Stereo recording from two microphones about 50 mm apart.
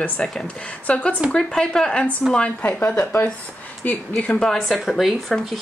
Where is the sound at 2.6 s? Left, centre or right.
Left.